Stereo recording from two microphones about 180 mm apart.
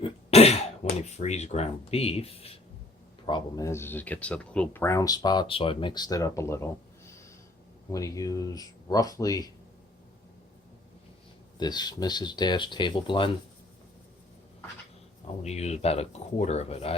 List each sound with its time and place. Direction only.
0.0 s cough: 35° left (ahead or behind)
1.1 s speech: 40° left (ahead or behind)
3.2 s speech: 25° left (ahead or behind)
11.6 s speech: 25° left (ahead or behind)
15.4 s speech: 35° left (ahead or behind)